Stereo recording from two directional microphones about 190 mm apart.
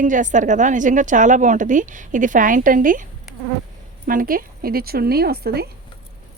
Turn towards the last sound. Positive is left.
turn(degrees=-55)  # may be behind; listen again after turning